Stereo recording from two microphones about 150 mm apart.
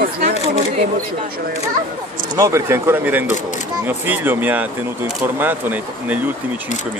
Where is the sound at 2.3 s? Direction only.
20° right (ahead or behind).